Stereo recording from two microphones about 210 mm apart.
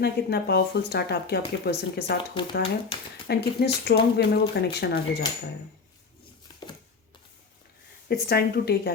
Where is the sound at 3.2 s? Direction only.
50° left (ahead or behind).